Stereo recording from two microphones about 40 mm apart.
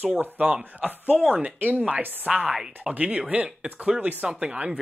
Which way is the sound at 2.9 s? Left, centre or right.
Right.